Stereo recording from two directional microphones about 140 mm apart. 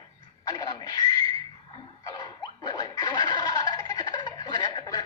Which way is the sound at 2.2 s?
30° left (ahead or behind).